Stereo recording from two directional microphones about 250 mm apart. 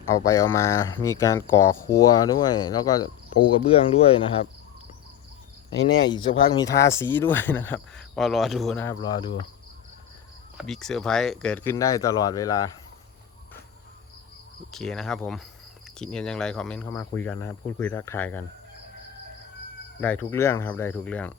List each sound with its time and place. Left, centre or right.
0.3 s speech: centre
6.1 s speech: centre
10.6 s speech: centre
14.7 s speech: centre
20.0 s speech: centre